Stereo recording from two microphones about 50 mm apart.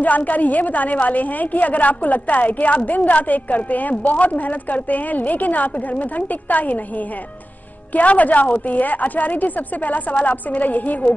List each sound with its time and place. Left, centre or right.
0.0 s a woman's voice: left
7.9 s a woman's voice: left